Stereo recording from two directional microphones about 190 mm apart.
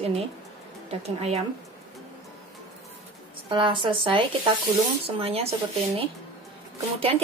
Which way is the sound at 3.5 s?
25° right (ahead or behind).